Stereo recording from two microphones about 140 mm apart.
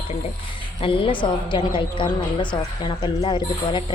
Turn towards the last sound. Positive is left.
turn(degrees=35)  # may be behind; listen again after turning